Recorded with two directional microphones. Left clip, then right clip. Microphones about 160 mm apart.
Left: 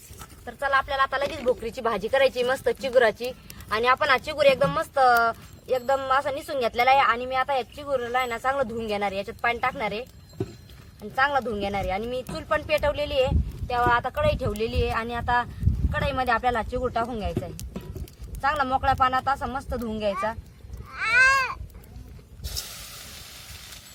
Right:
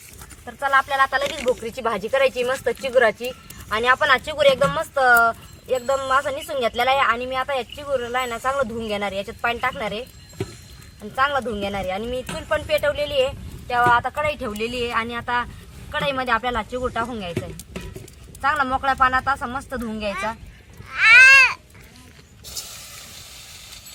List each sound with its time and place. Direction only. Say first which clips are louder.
0.4 s speech: right 5 dB; 20° left (ahead or behind)
11.0 s speech: right 2 dB; 15° left (ahead or behind)
14.2 s speech: right 1 dB; 35° left (ahead or behind)
14.6 s speech: right 3 dB; 50° left (ahead or behind)
16.7 s speech: right 2 dB; 20° left (ahead or behind)
20.9 s a sound: right 9 dB; 90° left
23.0 s vehicle: right 2 dB; 40° left (ahead or behind)